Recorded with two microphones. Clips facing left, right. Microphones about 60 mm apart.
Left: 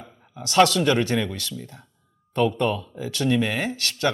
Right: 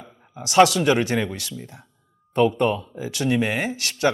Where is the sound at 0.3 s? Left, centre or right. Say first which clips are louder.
Right 2 dB; centre.